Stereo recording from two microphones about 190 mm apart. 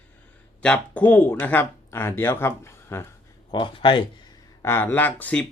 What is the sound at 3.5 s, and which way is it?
Speech, 25° left (ahead or behind).